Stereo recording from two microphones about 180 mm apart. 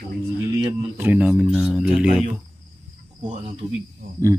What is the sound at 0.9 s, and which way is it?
Speech, 10° right (ahead or behind).